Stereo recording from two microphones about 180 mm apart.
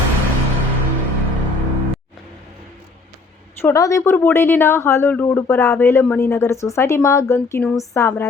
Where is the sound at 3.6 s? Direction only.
15° left (ahead or behind).